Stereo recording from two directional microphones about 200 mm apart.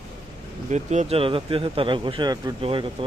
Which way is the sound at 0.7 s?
35° right (ahead or behind).